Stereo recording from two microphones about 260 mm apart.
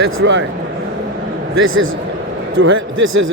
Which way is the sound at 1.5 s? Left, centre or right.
Right.